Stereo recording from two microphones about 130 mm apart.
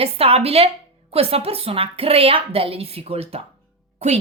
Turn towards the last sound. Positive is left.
turn(degrees=-55)  # may be behind; listen again after turning